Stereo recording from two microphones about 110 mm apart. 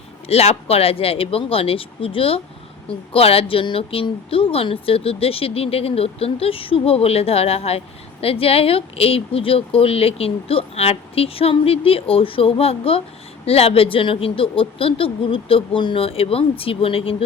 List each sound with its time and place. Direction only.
0.3 s speech: 70° left (ahead or behind)